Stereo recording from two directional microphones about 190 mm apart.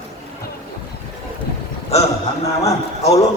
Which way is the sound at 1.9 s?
35° left (ahead or behind).